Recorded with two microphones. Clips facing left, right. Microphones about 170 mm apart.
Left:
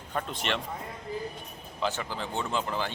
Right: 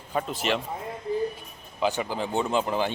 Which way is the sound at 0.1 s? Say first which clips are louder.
Right 5 dB; 5° right (ahead or behind).